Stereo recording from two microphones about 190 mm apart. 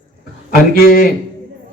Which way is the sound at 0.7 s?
55° left (ahead or behind).